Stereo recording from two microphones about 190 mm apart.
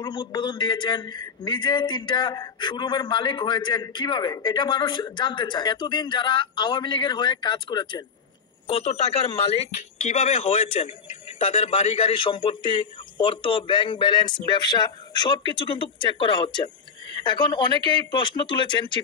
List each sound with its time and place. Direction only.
0.0 s speech: 25° left (ahead or behind)